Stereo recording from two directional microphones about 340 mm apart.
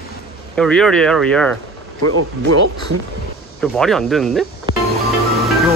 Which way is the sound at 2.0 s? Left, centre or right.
Right.